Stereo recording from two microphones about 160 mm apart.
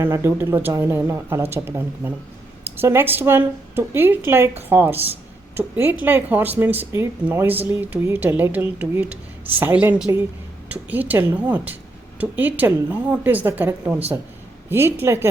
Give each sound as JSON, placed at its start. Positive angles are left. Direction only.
{"t": 0.0, "sound": "a woman's voice", "side_deg": -15}